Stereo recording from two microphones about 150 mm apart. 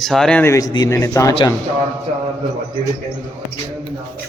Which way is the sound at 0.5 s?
25° left (ahead or behind).